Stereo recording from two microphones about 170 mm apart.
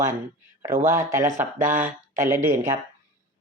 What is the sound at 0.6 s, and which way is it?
Speech, 15° right (ahead or behind).